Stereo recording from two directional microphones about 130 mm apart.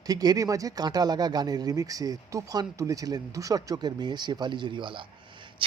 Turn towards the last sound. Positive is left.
turn(degrees=-40)  # may be behind; listen again after turning